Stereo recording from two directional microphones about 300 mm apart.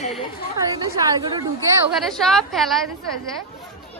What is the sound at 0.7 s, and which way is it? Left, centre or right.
Speech, centre.